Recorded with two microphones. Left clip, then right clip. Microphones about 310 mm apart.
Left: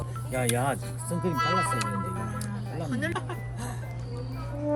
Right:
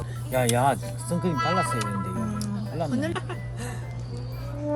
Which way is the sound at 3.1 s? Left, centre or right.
Centre.